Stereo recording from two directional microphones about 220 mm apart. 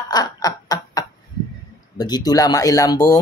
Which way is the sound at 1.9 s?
20° left (ahead or behind).